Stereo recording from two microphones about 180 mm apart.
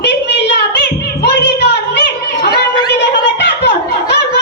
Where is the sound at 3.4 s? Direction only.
70° left (ahead or behind).